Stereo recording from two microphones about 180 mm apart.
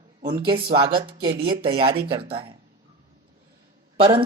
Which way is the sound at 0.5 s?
30° right (ahead or behind).